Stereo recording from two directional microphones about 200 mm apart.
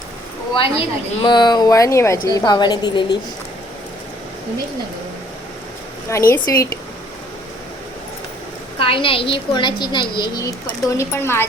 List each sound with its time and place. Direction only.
0.5 s speech: 25° left (ahead or behind)
6.1 s speech: 15° left (ahead or behind)
8.8 s speech: 25° left (ahead or behind)